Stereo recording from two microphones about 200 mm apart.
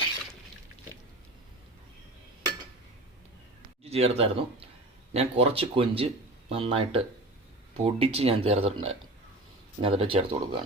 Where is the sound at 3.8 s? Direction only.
30° right (ahead or behind).